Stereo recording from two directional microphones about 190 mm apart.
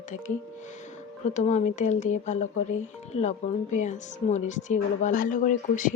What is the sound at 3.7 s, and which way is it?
Speech, 40° left (ahead or behind).